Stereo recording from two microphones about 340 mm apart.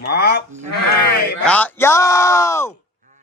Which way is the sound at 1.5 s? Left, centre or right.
Centre.